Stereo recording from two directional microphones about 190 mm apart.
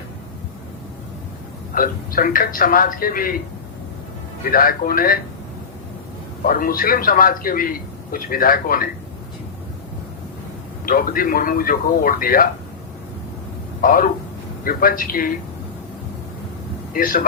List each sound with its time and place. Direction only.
1.7 s speech: 50° left (ahead or behind)
4.5 s speech: 50° left (ahead or behind)
6.5 s speech: 50° left (ahead or behind)
10.8 s speech: 50° left (ahead or behind)
13.8 s speech: 45° left (ahead or behind)
16.9 s speech: 45° left (ahead or behind)